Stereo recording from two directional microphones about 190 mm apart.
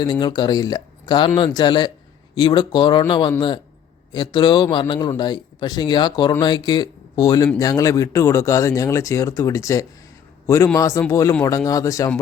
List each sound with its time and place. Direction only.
0.0 s a man's voice: 25° left (ahead or behind)